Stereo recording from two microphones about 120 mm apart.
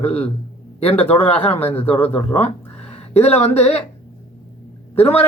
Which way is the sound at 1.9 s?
15° left (ahead or behind).